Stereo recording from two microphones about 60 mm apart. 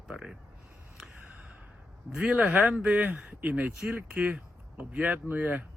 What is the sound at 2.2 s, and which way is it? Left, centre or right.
Speech, right.